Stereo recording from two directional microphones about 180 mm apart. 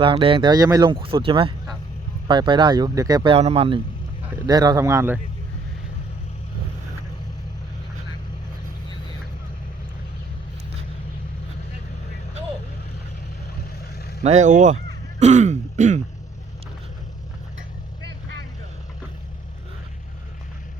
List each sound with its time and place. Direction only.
0.0 s speech: 30° right (ahead or behind)
3.3 s speech: 35° right (ahead or behind)
4.4 s a man's voice: 20° right (ahead or behind)
14.3 s speech: 40° right (ahead or behind)
15.2 s throat clearing: 40° right (ahead or behind)